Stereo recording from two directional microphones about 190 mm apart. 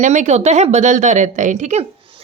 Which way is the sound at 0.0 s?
40° right (ahead or behind).